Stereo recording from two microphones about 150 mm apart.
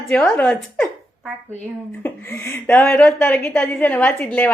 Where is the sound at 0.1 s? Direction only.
10° left (ahead or behind).